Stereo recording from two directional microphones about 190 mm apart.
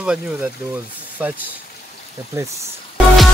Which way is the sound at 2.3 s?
15° right (ahead or behind).